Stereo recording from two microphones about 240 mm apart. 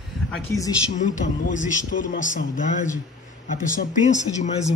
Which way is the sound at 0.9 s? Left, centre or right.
Left.